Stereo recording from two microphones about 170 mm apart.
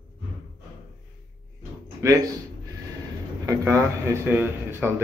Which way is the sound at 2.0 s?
15° right (ahead or behind).